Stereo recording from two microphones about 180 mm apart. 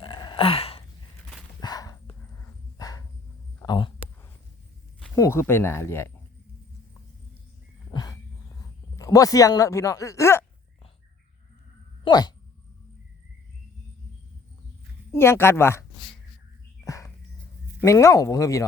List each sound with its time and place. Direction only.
0.0 s gasp: 25° left (ahead or behind)
1.6 s a sound: 20° left (ahead or behind)
3.6 s speech: 25° left (ahead or behind)
5.1 s speech: 15° left (ahead or behind)
7.9 s a sound: 20° left (ahead or behind)
9.0 s speech: 20° left (ahead or behind)
12.0 s speech: 20° left (ahead or behind)
15.1 s speech: 15° left (ahead or behind)
16.8 s a sound: 15° left (ahead or behind)
17.7 s speech: 15° left (ahead or behind)